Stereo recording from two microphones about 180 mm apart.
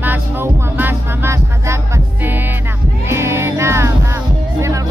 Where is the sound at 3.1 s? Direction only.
15° right (ahead or behind).